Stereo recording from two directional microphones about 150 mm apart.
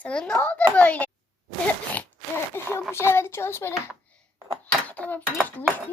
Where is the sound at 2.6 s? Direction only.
15° left (ahead or behind).